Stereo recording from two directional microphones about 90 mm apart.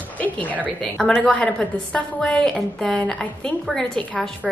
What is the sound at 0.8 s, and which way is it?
A woman's voice, 5° left (ahead or behind).